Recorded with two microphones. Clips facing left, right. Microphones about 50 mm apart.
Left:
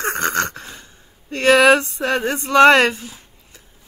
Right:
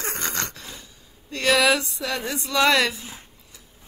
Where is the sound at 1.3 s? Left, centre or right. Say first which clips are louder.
Left 7 dB; left.